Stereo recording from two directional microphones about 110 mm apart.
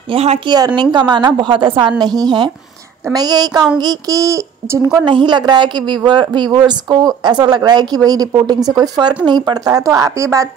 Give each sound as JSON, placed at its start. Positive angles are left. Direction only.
{"t": 0.1, "sound": "speech", "side_deg": -70}
{"t": 0.7, "sound": "a woman's voice", "side_deg": -45}
{"t": 4.8, "sound": "a woman's voice", "side_deg": -45}